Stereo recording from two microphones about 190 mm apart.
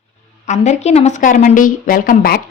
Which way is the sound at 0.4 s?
35° left (ahead or behind).